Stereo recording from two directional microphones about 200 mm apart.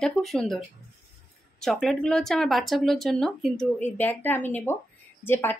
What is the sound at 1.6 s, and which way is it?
A woman's voice, centre (ahead or behind).